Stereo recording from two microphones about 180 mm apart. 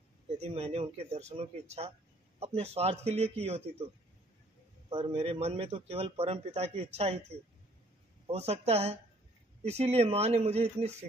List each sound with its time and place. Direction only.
0.4 s a man's voice: 35° right (ahead or behind)
4.9 s a man's voice: 35° right (ahead or behind)
8.3 s a man's voice: 35° right (ahead or behind)